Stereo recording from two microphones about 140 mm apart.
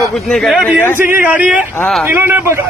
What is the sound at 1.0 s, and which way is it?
A man's voice, 15° right (ahead or behind).